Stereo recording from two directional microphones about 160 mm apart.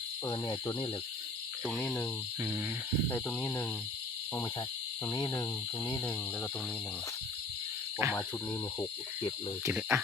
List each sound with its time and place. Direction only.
0.3 s speech: 25° left (ahead or behind)
1.8 s cricket: 15° left (ahead or behind)
3.1 s cricket: 10° left (ahead or behind)
5.0 s cricket: 15° left (ahead or behind)
8.0 s speech: 20° right (ahead or behind)
9.6 s cricket: 15° right (ahead or behind)